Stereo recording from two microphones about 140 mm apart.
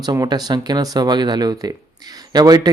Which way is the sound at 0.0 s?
25° right (ahead or behind).